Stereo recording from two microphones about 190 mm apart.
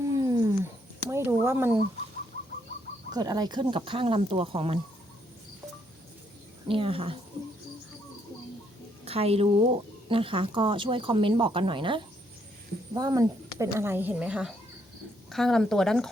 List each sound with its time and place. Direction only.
0.0 s cat: 20° right (ahead or behind)
1.1 s speech: 15° right (ahead or behind)
3.1 s speech: 20° right (ahead or behind)
6.7 s speech: 30° right (ahead or behind)
9.0 s speech: 30° right (ahead or behind); by 16.0 s centre (ahead or behind)